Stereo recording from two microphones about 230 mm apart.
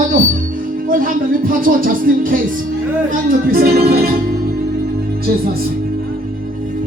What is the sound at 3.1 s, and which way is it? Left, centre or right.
Music, right.